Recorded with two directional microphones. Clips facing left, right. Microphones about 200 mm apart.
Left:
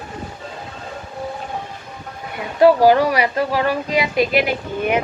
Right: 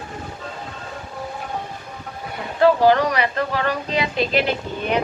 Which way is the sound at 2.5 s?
10° left (ahead or behind).